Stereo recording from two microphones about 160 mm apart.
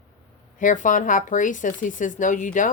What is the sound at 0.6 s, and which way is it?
Speech, 55° left (ahead or behind).